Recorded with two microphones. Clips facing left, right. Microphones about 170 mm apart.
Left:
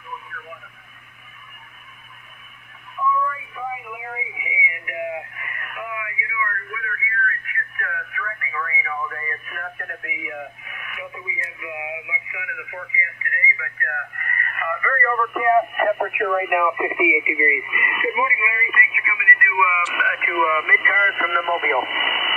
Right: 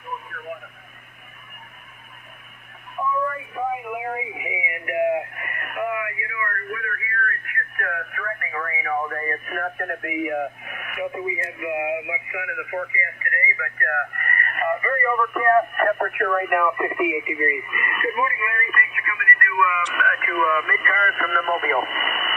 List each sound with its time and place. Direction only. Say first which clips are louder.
0.3 s radio: right 5 dB; 50° right (ahead or behind)
3.3 s a sound: right 3 dB; 50° right (ahead or behind); by 15.0 s 20° right (ahead or behind)
15.0 s speech: left 1 dB; centre (ahead or behind)